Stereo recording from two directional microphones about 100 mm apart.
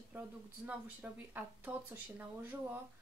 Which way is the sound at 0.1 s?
20° right (ahead or behind).